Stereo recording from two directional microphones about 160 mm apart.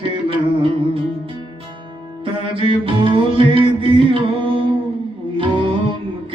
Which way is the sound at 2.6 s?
35° right (ahead or behind).